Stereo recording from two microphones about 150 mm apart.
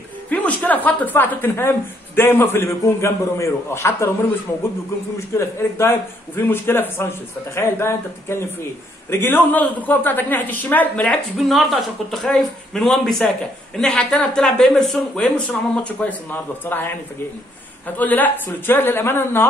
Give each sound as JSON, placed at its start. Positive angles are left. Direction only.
{"t": 0.3, "sound": "a man's voice", "side_deg": 10}
{"t": 5.3, "sound": "a man's voice", "side_deg": 15}
{"t": 17.9, "sound": "a man's voice", "side_deg": 10}